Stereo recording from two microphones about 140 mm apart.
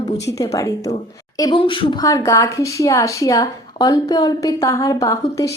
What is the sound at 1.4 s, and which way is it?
Speech, 35° left (ahead or behind).